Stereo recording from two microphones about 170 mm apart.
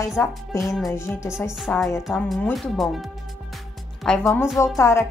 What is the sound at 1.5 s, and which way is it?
Speech, centre (ahead or behind).